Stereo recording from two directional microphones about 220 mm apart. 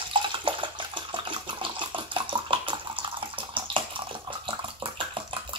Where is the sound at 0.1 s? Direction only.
20° right (ahead or behind).